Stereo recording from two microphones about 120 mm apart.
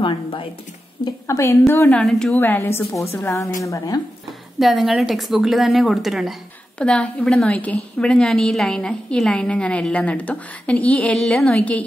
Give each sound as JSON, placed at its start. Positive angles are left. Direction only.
{"t": 0.0, "sound": "a sound", "side_deg": 45}
{"t": 1.2, "sound": "a woman's voice", "side_deg": 25}
{"t": 1.7, "sound": "a woman's voice", "side_deg": 15}
{"t": 2.3, "sound": "a woman's voice", "side_deg": 20}
{"t": 4.6, "sound": "a woman's voice", "side_deg": 0}
{"t": 6.8, "sound": "a woman's voice", "side_deg": 10}